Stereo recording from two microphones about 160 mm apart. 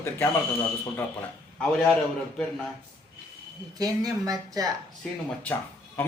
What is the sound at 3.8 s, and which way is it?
Speech, 25° right (ahead or behind).